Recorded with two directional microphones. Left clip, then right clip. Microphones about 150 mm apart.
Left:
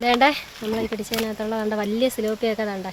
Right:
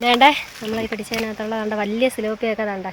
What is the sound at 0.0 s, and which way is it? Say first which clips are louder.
Speech: right 4 dB; 5° left (ahead or behind).